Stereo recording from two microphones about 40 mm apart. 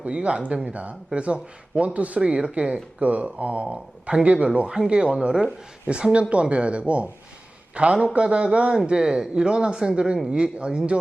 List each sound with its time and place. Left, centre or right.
0.0 s speech: right
3.0 s speech: right
3.2 s a man's voice: right